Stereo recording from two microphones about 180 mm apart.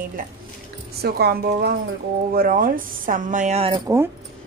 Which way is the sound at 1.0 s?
60° right (ahead or behind).